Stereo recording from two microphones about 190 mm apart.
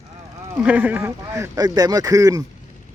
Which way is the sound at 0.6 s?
10° right (ahead or behind).